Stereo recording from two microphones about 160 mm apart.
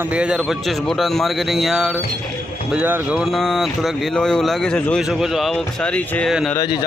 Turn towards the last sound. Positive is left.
turn(degrees=25)  # may be behind; listen again after turning